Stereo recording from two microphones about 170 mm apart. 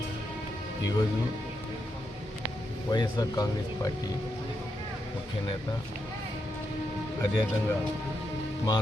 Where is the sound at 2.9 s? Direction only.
25° left (ahead or behind).